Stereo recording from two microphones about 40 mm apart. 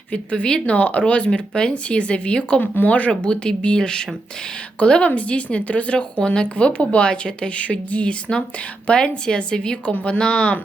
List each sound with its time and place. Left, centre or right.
0.1 s speech: left
1.3 s speech: left
2.6 s speech: left
3.1 s speech: left
4.8 s speech: left
7.6 s speech: left